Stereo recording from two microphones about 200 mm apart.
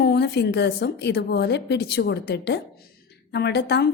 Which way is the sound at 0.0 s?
55° left (ahead or behind).